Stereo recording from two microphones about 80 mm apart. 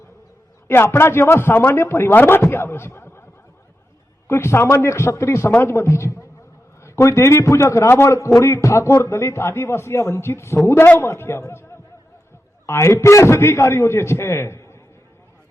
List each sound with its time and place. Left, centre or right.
0.7 s a man's voice: left
4.3 s a man's voice: left
12.6 s a man's voice: left